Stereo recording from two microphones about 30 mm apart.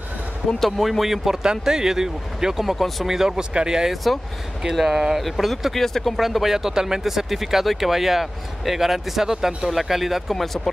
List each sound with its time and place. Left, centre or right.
0.7 s speech: centre
1.4 s speech: right
2.6 s speech: centre
3.1 s speech: centre
3.9 s speech: centre
4.8 s speech: centre
5.2 s speech: centre
6.1 s speech: centre; by 7.0 s right
7.0 s speech: centre
10.2 s speech: centre